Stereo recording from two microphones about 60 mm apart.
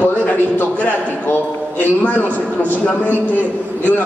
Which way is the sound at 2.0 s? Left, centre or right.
Left.